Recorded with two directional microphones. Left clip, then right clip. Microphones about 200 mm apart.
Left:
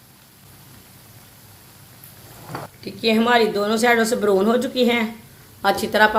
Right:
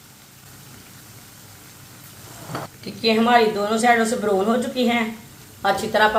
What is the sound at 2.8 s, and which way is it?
A woman's voice, 50° left (ahead or behind).